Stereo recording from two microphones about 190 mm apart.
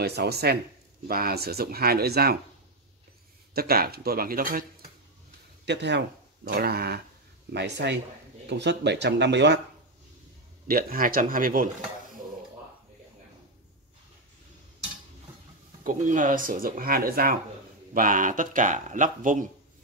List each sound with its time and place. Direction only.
0.0 s speech: 60° right (ahead or behind)
3.5 s speech: 55° right (ahead or behind)
5.7 s speech: 65° right (ahead or behind)
10.7 s speech: 50° right (ahead or behind)
15.8 s speech: 45° right (ahead or behind)